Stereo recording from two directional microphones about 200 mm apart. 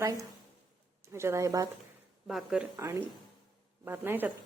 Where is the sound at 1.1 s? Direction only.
15° right (ahead or behind).